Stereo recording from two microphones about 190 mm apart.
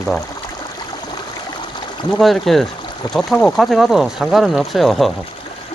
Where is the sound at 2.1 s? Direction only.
Centre (ahead or behind).